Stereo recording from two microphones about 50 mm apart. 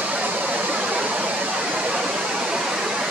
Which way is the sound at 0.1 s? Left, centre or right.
Right.